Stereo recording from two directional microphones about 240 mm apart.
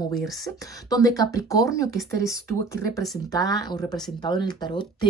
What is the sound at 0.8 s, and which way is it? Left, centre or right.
Speech, centre.